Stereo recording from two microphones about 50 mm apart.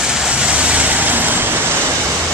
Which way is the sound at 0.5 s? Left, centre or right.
Right.